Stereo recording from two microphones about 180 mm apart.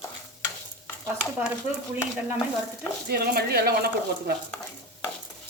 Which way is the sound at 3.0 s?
60° right (ahead or behind).